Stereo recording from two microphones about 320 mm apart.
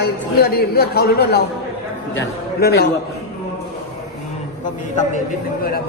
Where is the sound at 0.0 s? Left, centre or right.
Left.